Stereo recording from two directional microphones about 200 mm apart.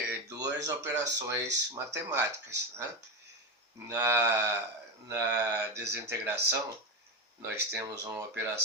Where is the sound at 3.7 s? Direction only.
15° right (ahead or behind).